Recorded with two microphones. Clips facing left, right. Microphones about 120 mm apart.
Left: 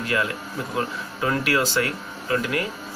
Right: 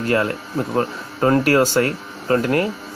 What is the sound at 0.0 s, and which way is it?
Speech, 45° right (ahead or behind).